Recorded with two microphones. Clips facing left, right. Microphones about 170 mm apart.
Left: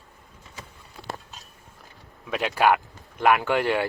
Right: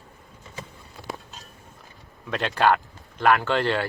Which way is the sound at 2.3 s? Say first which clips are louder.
Even; 5° left (ahead or behind).